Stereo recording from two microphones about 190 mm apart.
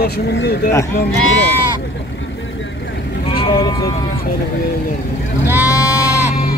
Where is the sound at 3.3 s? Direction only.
30° left (ahead or behind).